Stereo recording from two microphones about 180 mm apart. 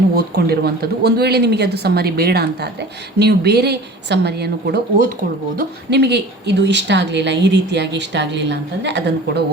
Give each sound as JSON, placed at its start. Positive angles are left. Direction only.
{"t": 0.1, "sound": "speech", "side_deg": -60}
{"t": 5.5, "sound": "speech", "side_deg": -65}